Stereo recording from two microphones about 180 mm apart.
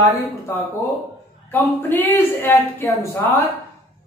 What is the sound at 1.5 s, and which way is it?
A woman's voice, 10° left (ahead or behind).